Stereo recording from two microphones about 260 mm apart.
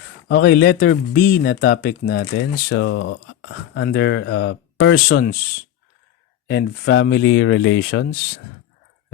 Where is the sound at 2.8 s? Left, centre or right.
Left.